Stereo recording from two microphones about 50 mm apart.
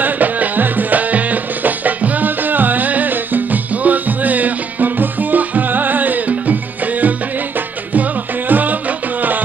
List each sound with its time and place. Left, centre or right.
0.0 s music: right